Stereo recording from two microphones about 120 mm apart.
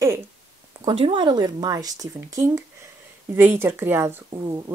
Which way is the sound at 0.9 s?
45° right (ahead or behind).